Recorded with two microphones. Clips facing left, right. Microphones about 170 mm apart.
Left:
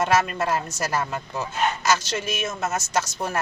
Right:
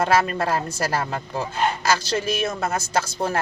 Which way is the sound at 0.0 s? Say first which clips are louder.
Right 2 dB; 35° right (ahead or behind).